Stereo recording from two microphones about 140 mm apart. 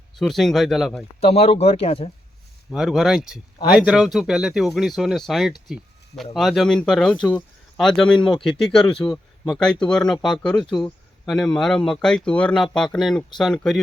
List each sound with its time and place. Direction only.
0.2 s speech: centre (ahead or behind)
1.2 s speech: 45° left (ahead or behind)
2.6 s speech: 5° right (ahead or behind)
5.6 s a sound: centre (ahead or behind)
6.3 s speech: centre (ahead or behind)